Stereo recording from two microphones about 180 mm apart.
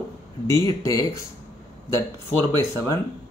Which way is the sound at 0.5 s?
15° left (ahead or behind).